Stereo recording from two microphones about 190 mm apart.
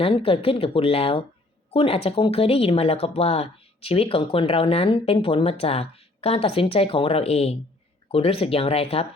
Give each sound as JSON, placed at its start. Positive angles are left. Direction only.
{"t": 0.0, "sound": "speech", "side_deg": 30}